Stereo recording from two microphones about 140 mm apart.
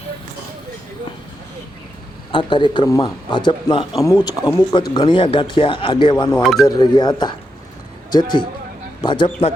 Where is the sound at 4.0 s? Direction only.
25° left (ahead or behind).